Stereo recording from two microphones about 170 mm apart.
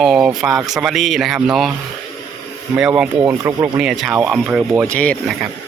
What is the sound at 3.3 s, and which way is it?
Speech, 15° right (ahead or behind).